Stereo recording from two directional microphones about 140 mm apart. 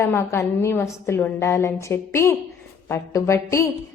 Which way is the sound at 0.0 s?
20° left (ahead or behind).